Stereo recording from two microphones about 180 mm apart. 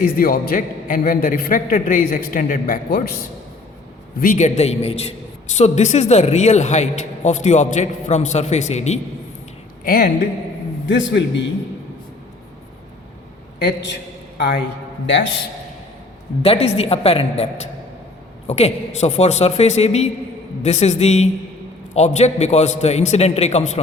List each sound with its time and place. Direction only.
0.0 s a man's voice: 55° left (ahead or behind)
4.2 s a man's voice: 45° left (ahead or behind)
9.8 s a woman's voice: 55° left (ahead or behind)
10.8 s a man's voice: 80° left
13.6 s a man's voice: 70° left (ahead or behind)
15.0 s a man's voice: 85° left
16.4 s a man's voice: 35° left (ahead or behind)